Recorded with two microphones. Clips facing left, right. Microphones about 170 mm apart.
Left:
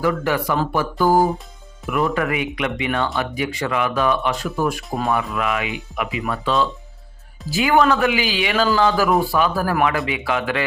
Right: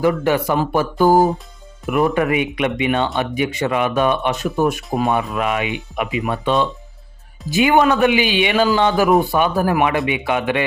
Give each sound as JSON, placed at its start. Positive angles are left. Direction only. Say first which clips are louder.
{"t": 0.0, "sound": "speech", "louder": "right 4 dB", "side_deg": -25}